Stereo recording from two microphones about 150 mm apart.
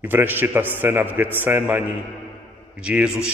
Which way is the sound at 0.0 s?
15° right (ahead or behind).